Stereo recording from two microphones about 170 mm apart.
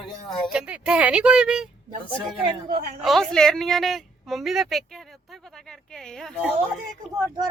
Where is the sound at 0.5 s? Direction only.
5° right (ahead or behind).